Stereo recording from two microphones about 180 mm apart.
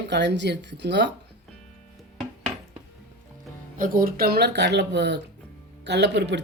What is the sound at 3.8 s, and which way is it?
Speech, 55° right (ahead or behind).